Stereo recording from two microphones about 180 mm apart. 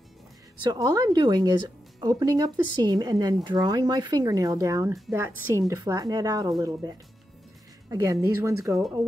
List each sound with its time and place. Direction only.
0.7 s speech: 20° right (ahead or behind)